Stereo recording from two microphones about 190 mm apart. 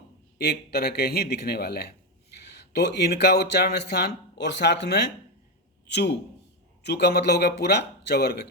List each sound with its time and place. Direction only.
0.3 s speech: 55° left (ahead or behind)